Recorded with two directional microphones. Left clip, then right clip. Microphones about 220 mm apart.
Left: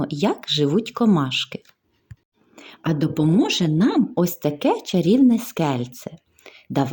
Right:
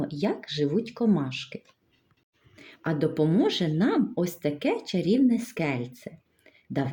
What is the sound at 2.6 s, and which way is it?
A woman's voice, 30° left (ahead or behind).